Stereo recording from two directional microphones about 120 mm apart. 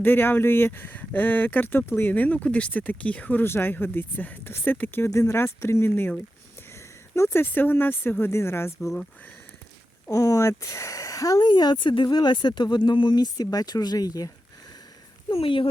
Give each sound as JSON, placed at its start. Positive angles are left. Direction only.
{"t": 0.0, "sound": "speech", "side_deg": 15}
{"t": 7.2, "sound": "speech", "side_deg": 20}
{"t": 10.1, "sound": "speech", "side_deg": 25}
{"t": 15.3, "sound": "speech", "side_deg": 50}